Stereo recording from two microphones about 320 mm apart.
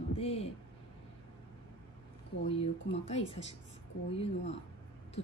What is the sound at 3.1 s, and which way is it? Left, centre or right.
Speech, centre.